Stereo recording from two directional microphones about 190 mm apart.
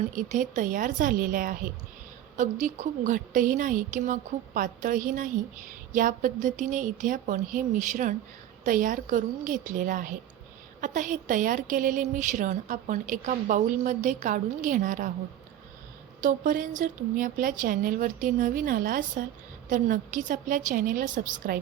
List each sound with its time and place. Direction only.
0.2 s a woman's voice: 40° right (ahead or behind)
16.2 s a woman's voice: 45° right (ahead or behind)